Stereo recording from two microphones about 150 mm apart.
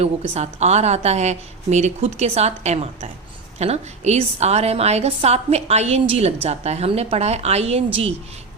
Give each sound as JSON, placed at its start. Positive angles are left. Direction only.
{"t": 0.0, "sound": "a woman's voice", "side_deg": -45}